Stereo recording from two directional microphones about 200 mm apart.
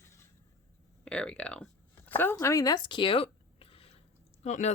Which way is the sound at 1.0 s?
5° left (ahead or behind).